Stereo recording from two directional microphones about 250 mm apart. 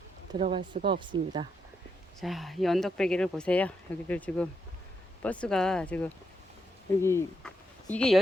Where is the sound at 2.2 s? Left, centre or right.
Centre.